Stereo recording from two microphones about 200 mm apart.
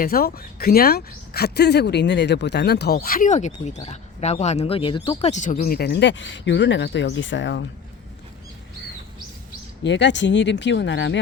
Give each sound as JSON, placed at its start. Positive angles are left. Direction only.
{"t": 0.0, "sound": "speech", "side_deg": 50}
{"t": 5.3, "sound": "speech", "side_deg": 35}
{"t": 9.8, "sound": "speech", "side_deg": 60}